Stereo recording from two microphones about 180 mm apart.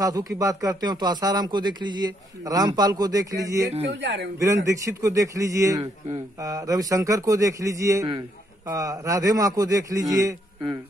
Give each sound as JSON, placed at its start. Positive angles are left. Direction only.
{"t": 0.0, "sound": "a man's voice", "side_deg": -20}
{"t": 4.0, "sound": "speech", "side_deg": -75}
{"t": 4.6, "sound": "a man's voice", "side_deg": -15}